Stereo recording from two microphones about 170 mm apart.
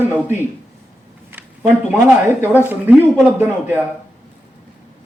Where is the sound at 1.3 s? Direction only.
15° right (ahead or behind).